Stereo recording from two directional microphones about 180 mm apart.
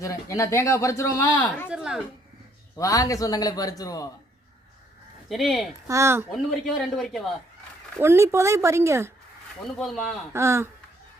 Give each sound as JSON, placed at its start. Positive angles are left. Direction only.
{"t": 0.0, "sound": "speech", "side_deg": 15}
{"t": 1.7, "sound": "speech", "side_deg": -5}
{"t": 2.7, "sound": "a man's voice", "side_deg": 20}
{"t": 5.3, "sound": "speech", "side_deg": 0}
{"t": 5.9, "sound": "speech", "side_deg": -15}
{"t": 6.3, "sound": "speech", "side_deg": 0}
{"t": 7.9, "sound": "speech", "side_deg": -15}
{"t": 9.6, "sound": "speech", "side_deg": 0}
{"t": 10.3, "sound": "speech", "side_deg": -15}